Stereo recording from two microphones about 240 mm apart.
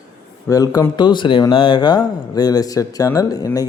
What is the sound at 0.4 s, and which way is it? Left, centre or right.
Speech, centre.